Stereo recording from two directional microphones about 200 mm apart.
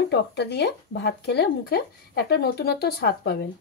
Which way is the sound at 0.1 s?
55° left (ahead or behind).